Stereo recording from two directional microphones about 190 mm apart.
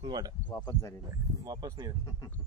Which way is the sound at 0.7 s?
15° left (ahead or behind).